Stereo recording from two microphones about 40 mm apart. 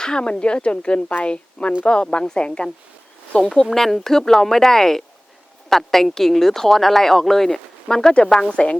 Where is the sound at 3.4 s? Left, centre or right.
Centre.